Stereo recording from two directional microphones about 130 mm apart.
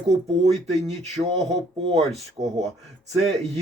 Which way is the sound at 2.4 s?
25° right (ahead or behind).